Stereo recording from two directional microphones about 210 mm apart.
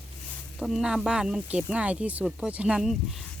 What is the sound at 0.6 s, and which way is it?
Speech, centre (ahead or behind).